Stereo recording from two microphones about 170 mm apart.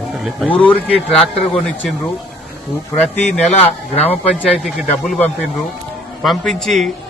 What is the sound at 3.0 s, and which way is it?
Speech, 40° left (ahead or behind).